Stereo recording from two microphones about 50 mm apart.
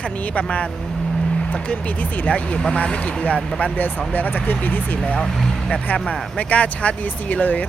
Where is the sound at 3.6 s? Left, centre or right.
Left.